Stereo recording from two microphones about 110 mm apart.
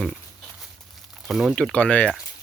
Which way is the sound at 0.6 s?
Centre (ahead or behind).